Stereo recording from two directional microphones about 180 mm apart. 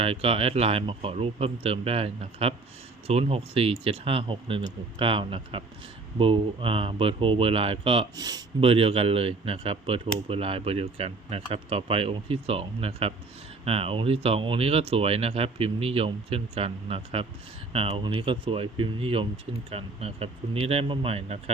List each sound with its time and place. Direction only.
0.0 s speech: 35° right (ahead or behind)